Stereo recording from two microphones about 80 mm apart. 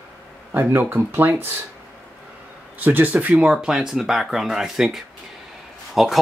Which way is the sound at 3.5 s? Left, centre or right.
Centre.